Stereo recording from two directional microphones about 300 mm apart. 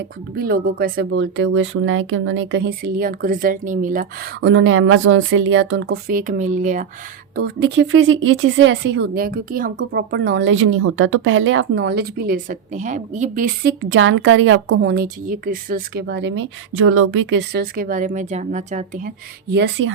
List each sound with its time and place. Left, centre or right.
0.0 s a woman's voice: right
7.3 s a woman's voice: right